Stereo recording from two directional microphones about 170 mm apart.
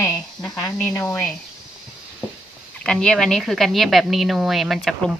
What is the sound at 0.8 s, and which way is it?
Speech, 15° left (ahead or behind).